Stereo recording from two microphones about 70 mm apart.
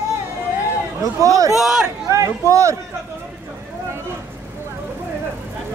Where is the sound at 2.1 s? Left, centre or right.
Right.